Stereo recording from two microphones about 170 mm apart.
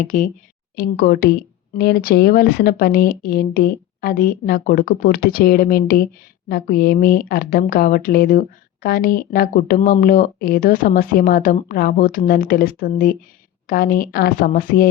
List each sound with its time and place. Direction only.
0.0 s speech: 50° left (ahead or behind)
0.8 s speech: 65° left (ahead or behind)